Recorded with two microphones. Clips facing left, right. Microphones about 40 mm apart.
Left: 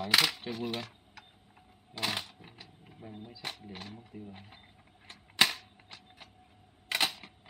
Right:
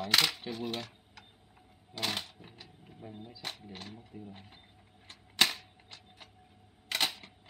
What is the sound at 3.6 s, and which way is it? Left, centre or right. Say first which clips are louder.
Speech: left 1 dB; centre.